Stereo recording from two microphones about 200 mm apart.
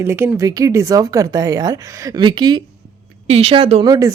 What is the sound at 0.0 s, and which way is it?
Speech, 10° right (ahead or behind).